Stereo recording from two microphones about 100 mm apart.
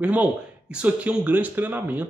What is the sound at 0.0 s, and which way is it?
Speech, 15° right (ahead or behind).